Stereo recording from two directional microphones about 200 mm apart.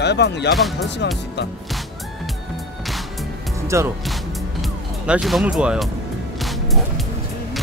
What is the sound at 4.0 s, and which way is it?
Music, centre (ahead or behind).